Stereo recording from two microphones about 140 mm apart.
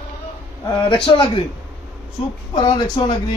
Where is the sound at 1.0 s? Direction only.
35° left (ahead or behind).